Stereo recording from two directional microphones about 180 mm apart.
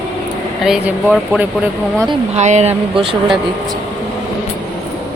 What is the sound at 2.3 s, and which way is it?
Speech, 40° right (ahead or behind).